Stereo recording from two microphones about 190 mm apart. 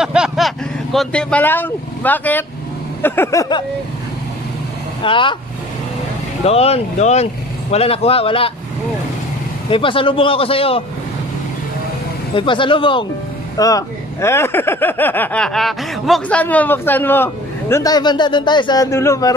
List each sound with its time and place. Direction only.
0.0 s vehicle: 5° right (ahead or behind)
0.9 s speech: 5° left (ahead or behind)
5.0 s a man's voice: 25° left (ahead or behind)
6.4 s speech: 30° left (ahead or behind)
9.7 s a man's voice: 25° left (ahead or behind)
12.4 s a man's voice: 25° left (ahead or behind)